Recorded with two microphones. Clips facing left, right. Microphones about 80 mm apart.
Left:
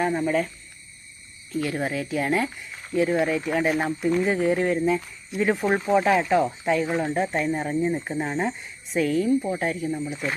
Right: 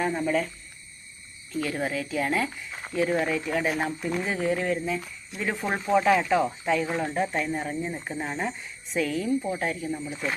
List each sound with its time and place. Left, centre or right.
0.0 s speech: centre
1.6 s speech: centre
5.5 s speech: centre
7.1 s speech: centre